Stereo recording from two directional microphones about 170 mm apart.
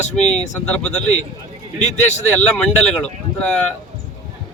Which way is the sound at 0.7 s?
5° left (ahead or behind).